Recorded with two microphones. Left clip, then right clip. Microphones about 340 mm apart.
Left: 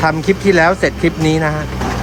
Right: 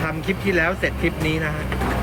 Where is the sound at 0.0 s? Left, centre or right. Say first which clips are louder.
Left 10 dB; centre.